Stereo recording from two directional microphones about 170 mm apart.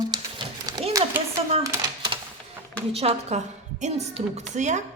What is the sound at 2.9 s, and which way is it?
Speech, 35° right (ahead or behind).